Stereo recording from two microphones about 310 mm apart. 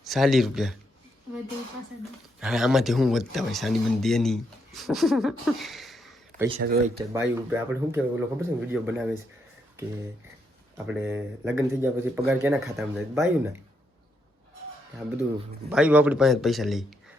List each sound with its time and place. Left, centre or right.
0.0 s speech: centre
2.4 s speech: centre
6.7 s speech: right
7.1 s speech: centre
10.8 s speech: centre
15.7 s speech: centre